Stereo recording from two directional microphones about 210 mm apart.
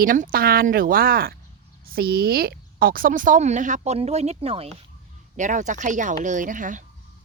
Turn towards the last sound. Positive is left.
turn(degrees=-40)  # may be behind; listen again after turning